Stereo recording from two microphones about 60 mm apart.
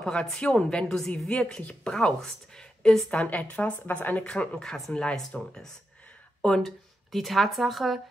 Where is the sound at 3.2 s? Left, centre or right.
Left.